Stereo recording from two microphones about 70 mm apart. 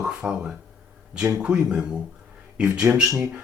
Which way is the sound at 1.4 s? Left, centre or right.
Centre.